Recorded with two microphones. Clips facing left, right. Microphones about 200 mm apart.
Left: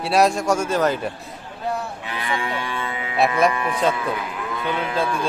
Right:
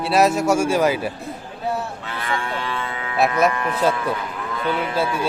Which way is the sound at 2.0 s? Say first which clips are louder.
Even; 15° left (ahead or behind).